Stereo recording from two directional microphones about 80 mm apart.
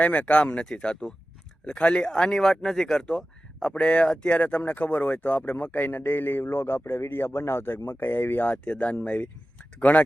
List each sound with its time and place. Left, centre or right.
0.0 s speech: centre